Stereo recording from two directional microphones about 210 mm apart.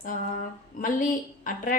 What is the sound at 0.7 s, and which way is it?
Speech, 40° left (ahead or behind).